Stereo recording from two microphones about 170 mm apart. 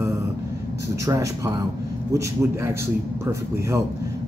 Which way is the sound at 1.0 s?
20° right (ahead or behind).